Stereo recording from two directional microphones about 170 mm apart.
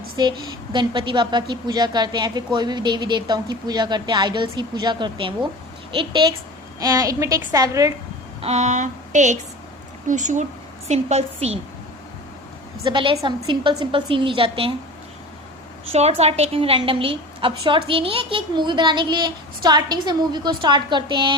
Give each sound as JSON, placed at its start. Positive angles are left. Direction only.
{"t": 0.2, "sound": "a woman's voice", "side_deg": -25}
{"t": 8.4, "sound": "a woman's voice", "side_deg": -40}
{"t": 12.8, "sound": "a woman's voice", "side_deg": -30}
{"t": 15.9, "sound": "a woman's voice", "side_deg": -40}